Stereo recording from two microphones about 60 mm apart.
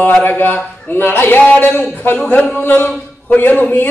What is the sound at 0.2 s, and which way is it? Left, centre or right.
A man's voice, left.